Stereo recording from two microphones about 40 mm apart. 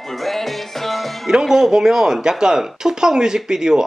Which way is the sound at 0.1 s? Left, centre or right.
Centre.